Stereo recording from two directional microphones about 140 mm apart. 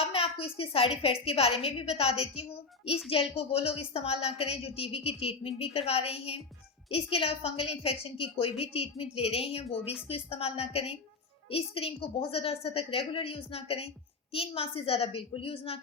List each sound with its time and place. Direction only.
0.0 s a woman's voice: 45° left (ahead or behind)